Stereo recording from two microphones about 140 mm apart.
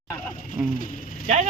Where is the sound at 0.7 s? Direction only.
80° left.